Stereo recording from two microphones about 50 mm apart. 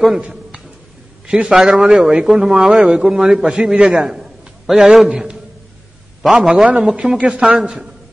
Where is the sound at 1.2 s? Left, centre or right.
Centre.